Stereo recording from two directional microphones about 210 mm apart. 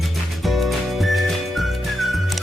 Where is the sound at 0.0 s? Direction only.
Centre (ahead or behind).